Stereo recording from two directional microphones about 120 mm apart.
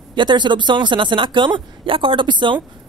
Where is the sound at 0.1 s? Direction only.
40° right (ahead or behind).